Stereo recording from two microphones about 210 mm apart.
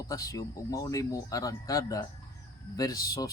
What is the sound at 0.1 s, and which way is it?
Speech, 15° left (ahead or behind).